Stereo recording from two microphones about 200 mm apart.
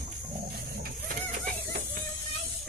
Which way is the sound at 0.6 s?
50° right (ahead or behind).